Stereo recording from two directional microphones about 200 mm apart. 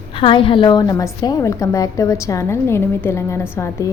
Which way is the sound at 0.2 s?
25° left (ahead or behind).